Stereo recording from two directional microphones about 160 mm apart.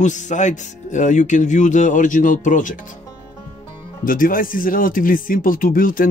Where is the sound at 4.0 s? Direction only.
60° left (ahead or behind).